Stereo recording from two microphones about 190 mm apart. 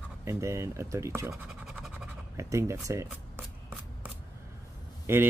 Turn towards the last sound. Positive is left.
turn(degrees=-10)  # may be behind; listen again after turning